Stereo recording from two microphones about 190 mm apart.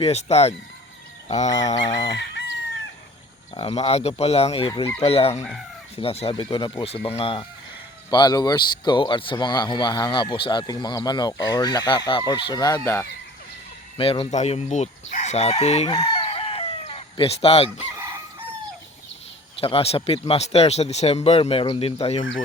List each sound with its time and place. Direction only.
0.0 s speech: 35° left (ahead or behind)
1.8 s speech: 20° left (ahead or behind)
2.1 s chicken: 65° left (ahead or behind)
3.5 s speech: 30° left (ahead or behind); by 13.1 s 10° left (ahead or behind)
13.9 s chicken: 30° left (ahead or behind)
19.5 s speech: 30° left (ahead or behind)